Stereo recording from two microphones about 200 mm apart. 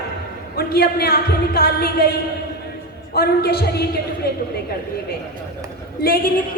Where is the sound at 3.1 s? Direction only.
50° left (ahead or behind).